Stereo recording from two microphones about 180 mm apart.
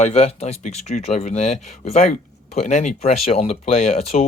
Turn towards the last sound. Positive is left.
turn(degrees=35)  # may be behind; listen again after turning